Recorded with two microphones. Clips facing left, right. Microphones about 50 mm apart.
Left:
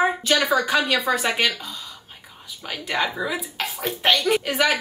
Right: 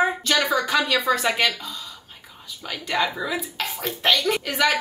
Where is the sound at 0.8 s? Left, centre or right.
Left.